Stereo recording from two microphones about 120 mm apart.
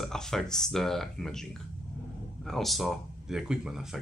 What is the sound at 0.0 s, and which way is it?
Speech, 5° left (ahead or behind).